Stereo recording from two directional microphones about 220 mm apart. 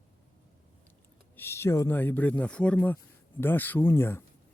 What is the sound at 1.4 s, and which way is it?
A man's voice, 10° left (ahead or behind).